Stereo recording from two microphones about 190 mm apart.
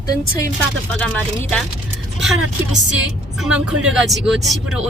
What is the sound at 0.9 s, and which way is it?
Speech, 5° left (ahead or behind).